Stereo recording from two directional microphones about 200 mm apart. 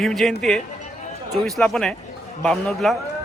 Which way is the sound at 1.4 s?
Centre (ahead or behind).